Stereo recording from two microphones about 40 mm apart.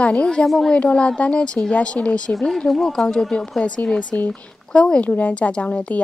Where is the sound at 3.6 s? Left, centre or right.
Left.